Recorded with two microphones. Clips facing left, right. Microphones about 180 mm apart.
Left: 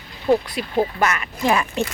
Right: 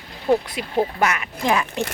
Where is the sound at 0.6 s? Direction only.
15° right (ahead or behind).